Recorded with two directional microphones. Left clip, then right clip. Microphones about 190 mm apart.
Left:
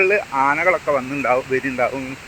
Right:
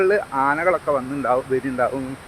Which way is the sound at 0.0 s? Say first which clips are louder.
Left 2 dB; 10° right (ahead or behind).